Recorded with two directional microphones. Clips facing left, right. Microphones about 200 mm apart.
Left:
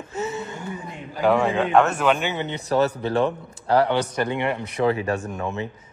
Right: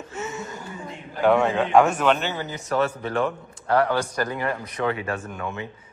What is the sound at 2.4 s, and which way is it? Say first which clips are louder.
A man's voice: left 3 dB; 30° left (ahead or behind).